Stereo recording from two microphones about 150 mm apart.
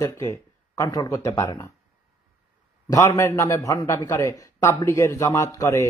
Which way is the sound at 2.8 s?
20° left (ahead or behind).